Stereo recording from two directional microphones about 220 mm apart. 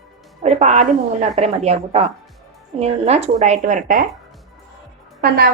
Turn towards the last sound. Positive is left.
turn(degrees=-45)  # may be behind; listen again after turning